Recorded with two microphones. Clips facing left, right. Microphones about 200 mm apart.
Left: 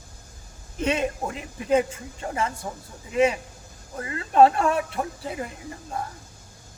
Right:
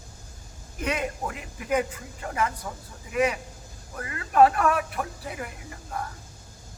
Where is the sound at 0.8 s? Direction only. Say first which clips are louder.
Left 4 dB; 25° left (ahead or behind).